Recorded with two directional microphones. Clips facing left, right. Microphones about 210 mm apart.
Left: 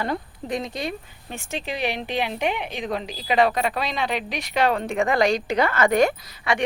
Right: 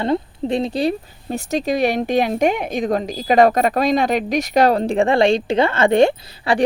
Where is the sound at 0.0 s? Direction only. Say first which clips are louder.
Right 8 dB; 25° right (ahead or behind).